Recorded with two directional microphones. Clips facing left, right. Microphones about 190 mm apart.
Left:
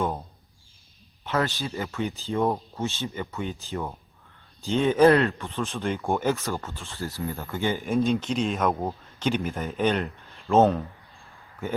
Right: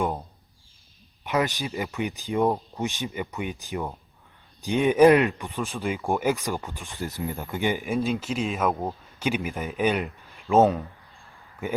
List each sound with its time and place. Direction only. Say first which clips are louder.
1.2 s speech: right 1 dB; 15° right (ahead or behind)
7.9 s speech: left 2 dB; centre (ahead or behind)